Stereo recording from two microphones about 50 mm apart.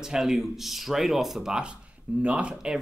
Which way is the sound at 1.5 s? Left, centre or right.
Centre.